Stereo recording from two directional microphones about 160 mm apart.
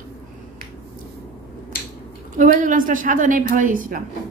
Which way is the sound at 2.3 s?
55° right (ahead or behind).